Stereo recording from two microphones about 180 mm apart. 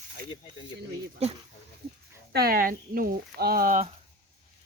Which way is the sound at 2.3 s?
55° right (ahead or behind).